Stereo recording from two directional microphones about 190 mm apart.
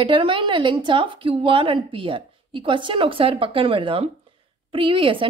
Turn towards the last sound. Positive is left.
turn(degrees=-25)  # may be behind; listen again after turning